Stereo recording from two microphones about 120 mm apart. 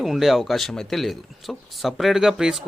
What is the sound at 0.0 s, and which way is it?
Speech, centre (ahead or behind).